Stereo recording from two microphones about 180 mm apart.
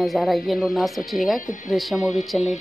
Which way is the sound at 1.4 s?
45° left (ahead or behind).